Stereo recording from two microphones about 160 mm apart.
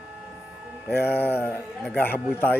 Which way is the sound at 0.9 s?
15° left (ahead or behind).